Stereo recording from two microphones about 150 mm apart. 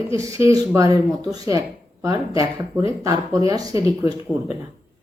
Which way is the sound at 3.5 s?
25° right (ahead or behind).